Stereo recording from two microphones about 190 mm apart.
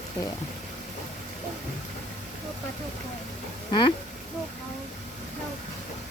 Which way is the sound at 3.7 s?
25° left (ahead or behind).